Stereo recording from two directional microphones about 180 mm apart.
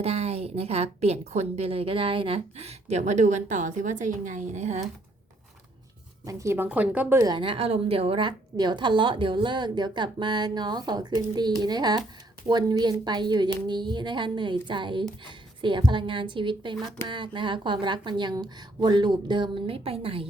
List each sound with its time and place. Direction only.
0.0 s a woman's voice: 35° right (ahead or behind)
6.2 s a woman's voice: 15° right (ahead or behind); by 20.2 s 30° right (ahead or behind)